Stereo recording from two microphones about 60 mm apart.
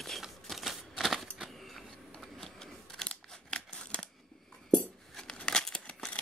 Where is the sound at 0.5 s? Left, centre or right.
Centre.